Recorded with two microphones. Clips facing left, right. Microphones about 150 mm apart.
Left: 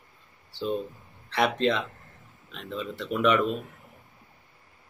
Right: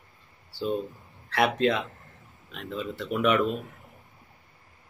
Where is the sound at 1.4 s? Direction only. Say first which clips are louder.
Right 1 dB; 5° right (ahead or behind).